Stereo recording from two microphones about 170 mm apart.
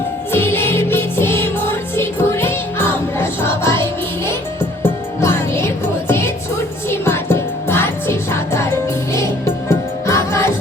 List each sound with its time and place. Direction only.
0.3 s music: 15° left (ahead or behind)